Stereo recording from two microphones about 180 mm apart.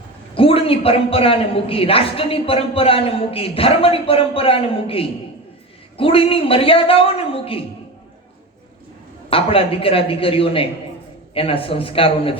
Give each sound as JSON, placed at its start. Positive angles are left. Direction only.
{"t": 0.3, "sound": "a woman's voice", "side_deg": 30}
{"t": 9.3, "sound": "a woman's voice", "side_deg": 30}